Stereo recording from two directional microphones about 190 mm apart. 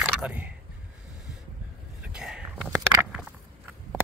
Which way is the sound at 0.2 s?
5° right (ahead or behind).